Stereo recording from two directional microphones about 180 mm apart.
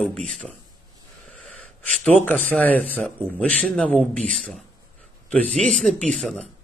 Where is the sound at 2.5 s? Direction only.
10° left (ahead or behind).